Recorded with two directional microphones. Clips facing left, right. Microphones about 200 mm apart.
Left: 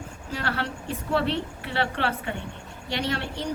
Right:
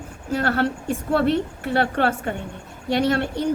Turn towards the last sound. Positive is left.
turn(degrees=-50)  # may be behind; listen again after turning